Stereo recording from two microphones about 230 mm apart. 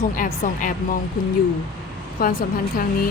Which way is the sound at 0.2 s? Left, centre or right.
Left.